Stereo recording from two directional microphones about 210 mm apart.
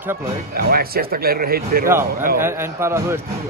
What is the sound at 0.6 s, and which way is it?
Speech, 45° right (ahead or behind).